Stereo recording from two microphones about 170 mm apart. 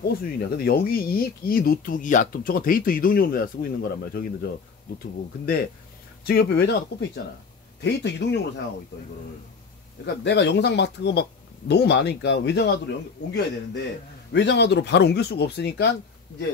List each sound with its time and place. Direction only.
0.0 s speech: 60° left (ahead or behind); by 8.6 s 80° left
10.0 s speech: 90° left